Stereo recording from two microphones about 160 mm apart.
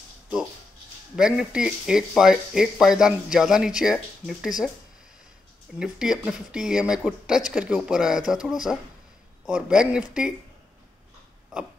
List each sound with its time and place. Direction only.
1.1 s speech: 5° right (ahead or behind)
5.8 s speech: 5° right (ahead or behind)